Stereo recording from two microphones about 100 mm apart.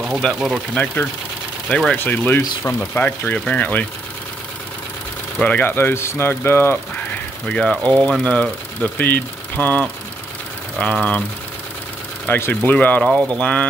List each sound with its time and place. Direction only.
0.2 s speech: 10° left (ahead or behind)
5.4 s speech: 15° left (ahead or behind)
7.4 s speech: 10° left (ahead or behind)
12.3 s speech: 20° left (ahead or behind)